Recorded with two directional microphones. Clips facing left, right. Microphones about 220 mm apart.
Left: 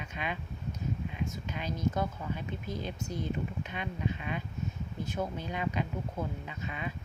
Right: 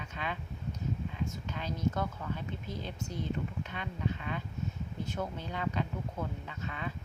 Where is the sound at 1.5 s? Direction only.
15° left (ahead or behind).